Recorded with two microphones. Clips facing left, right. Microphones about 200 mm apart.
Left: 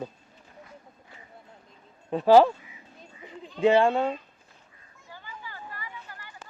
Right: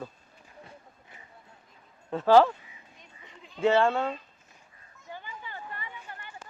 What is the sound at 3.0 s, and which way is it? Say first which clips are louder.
Goat: left 10 dB; 35° left (ahead or behind).